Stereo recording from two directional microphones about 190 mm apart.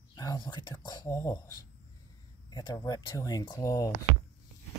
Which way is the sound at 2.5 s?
20° left (ahead or behind).